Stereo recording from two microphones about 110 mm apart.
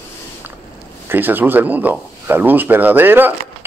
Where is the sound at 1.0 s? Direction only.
20° right (ahead or behind).